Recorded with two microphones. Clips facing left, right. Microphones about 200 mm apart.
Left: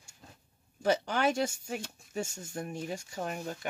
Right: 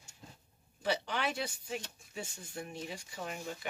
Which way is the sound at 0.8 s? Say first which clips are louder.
Left 6 dB; 45° left (ahead or behind).